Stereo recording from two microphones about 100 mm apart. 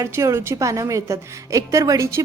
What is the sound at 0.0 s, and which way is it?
A woman's voice, 30° right (ahead or behind).